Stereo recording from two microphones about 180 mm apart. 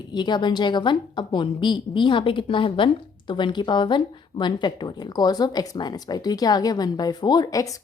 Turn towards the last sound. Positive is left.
turn(degrees=20)  # may be behind; listen again after turning